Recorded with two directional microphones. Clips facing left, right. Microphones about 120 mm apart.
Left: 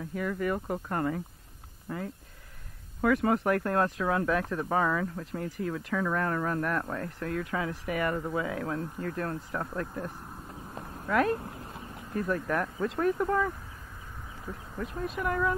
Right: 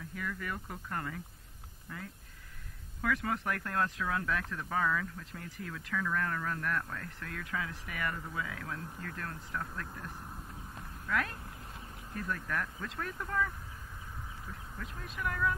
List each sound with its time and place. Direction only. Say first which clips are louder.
0.0 s speech: left 9 dB; 35° left (ahead or behind)
10.7 s clip-clop: left 6 dB; 35° left (ahead or behind)
12.2 s speech: left 8 dB; 30° left (ahead or behind)
15.0 s speech: left 5 dB; 35° left (ahead or behind)